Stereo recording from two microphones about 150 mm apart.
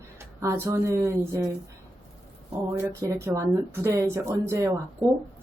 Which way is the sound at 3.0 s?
20° right (ahead or behind).